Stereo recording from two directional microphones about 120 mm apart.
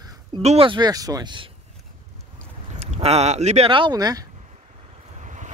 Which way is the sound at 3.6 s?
45° right (ahead or behind).